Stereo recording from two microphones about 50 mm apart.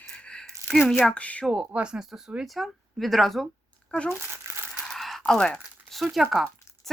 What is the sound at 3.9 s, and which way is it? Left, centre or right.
Speech, left.